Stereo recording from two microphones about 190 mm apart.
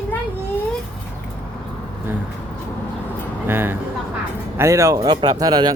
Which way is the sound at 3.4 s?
10° right (ahead or behind).